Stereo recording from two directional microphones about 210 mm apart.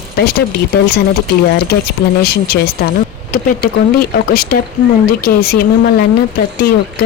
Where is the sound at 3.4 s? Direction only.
50° left (ahead or behind).